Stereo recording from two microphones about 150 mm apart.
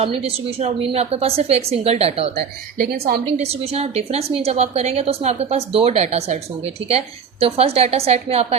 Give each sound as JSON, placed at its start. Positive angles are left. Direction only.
{"t": 0.0, "sound": "a woman's voice", "side_deg": -40}
{"t": 2.3, "sound": "a woman's voice", "side_deg": -90}
{"t": 3.3, "sound": "a woman's voice", "side_deg": -45}